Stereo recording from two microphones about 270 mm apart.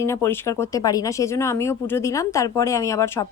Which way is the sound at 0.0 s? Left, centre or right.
Centre.